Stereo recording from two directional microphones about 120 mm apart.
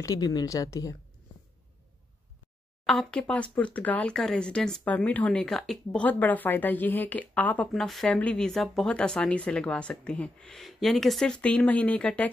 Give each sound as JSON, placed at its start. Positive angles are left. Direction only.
{"t": 0.0, "sound": "a woman's voice", "side_deg": 30}
{"t": 2.9, "sound": "speech", "side_deg": 5}